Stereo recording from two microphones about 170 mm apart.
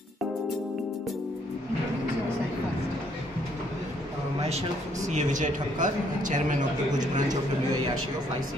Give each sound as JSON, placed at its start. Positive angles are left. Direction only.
{"t": 4.4, "sound": "speech", "side_deg": -40}